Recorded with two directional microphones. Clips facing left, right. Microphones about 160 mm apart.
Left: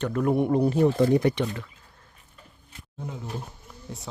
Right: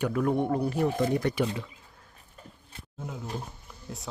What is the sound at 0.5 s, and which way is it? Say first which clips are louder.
Speech: left 6 dB; 25° left (ahead or behind).